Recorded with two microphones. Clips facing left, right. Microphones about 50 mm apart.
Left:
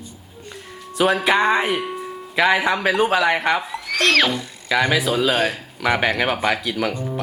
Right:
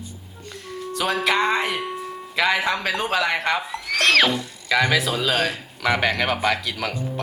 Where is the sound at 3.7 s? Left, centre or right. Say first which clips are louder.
Left 1 dB; centre.